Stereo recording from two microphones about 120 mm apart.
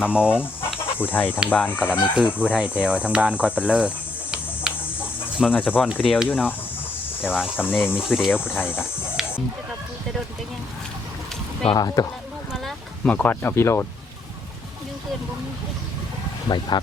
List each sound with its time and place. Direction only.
0.0 s speech: 10° right (ahead or behind)
0.9 s speech: 15° left (ahead or behind)
2.1 s speech: 10° right (ahead or behind)
2.6 s cricket: 10° right (ahead or behind)
5.5 s speech: 15° left (ahead or behind)
5.9 s speech: 5° right (ahead or behind)
6.2 s speech: 10° left (ahead or behind)
7.3 s speech: 5° right (ahead or behind)
8.3 s speech: 15° left (ahead or behind)
9.2 s fowl: 5° right (ahead or behind)
11.7 s speech: 35° left (ahead or behind)
13.1 s speech: 15° left (ahead or behind)
16.5 s speech: 35° left (ahead or behind)